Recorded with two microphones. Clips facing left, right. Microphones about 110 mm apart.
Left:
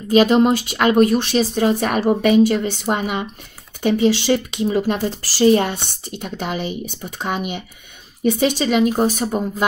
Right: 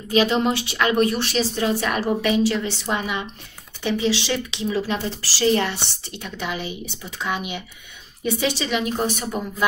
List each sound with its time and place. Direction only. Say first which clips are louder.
0.1 s speech: left 6 dB; 45° left (ahead or behind)